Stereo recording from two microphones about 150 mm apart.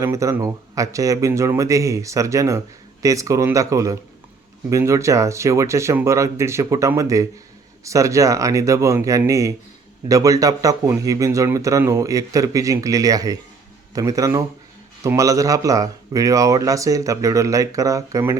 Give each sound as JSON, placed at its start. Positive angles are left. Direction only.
{"t": 0.0, "sound": "speech", "side_deg": -20}